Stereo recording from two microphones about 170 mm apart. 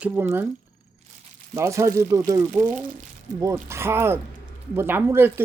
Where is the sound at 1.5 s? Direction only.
15° right (ahead or behind).